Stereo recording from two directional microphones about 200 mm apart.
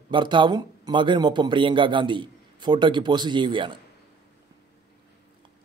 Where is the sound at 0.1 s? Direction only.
25° right (ahead or behind).